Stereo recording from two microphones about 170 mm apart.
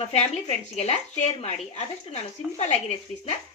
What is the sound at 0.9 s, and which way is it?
Speech, 40° left (ahead or behind).